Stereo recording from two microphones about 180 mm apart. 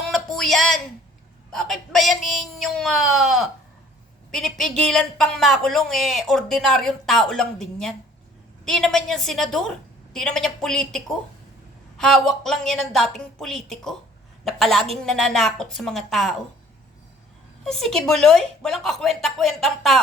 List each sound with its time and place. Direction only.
0.1 s a sound: centre (ahead or behind)
1.5 s speech: centre (ahead or behind)
17.6 s speech: 5° left (ahead or behind)